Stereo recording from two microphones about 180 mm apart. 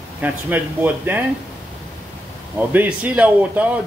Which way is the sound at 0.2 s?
10° right (ahead or behind).